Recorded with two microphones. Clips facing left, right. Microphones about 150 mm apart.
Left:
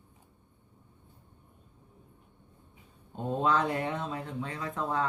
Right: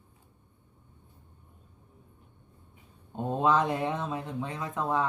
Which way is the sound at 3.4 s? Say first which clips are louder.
Right 3 dB; 20° right (ahead or behind).